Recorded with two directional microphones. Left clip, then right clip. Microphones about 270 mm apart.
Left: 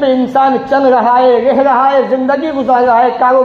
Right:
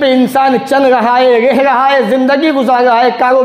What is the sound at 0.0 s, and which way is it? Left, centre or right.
A man's voice, right.